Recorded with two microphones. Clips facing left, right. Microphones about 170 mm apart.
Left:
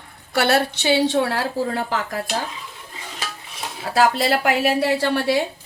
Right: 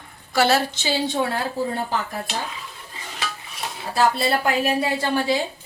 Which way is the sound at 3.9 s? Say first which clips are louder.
Left 2 dB; 90° left.